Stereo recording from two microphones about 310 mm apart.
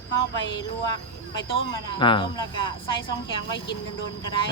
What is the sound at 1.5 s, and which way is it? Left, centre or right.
Speech, centre.